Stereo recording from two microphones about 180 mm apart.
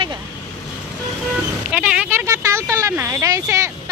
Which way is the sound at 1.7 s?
5° right (ahead or behind).